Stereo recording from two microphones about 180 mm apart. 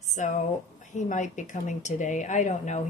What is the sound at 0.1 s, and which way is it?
Speech, 45° left (ahead or behind).